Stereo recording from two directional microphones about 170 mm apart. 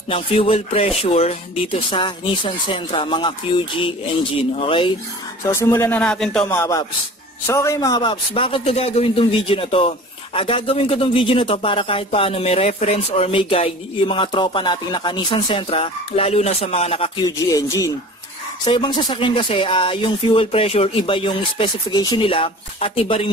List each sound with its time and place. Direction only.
0.1 s a man's voice: 35° left (ahead or behind)
5.4 s speech: 15° left (ahead or behind)
6.5 s a man's voice: 15° left (ahead or behind); by 17.1 s 35° left (ahead or behind)
17.5 s a man's voice: 20° left (ahead or behind)